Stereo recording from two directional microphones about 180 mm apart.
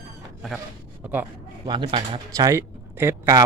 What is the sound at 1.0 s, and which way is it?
Speech, 10° right (ahead or behind).